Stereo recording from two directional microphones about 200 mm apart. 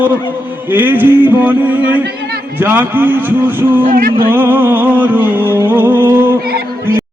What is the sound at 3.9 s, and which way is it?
Music, 45° right (ahead or behind).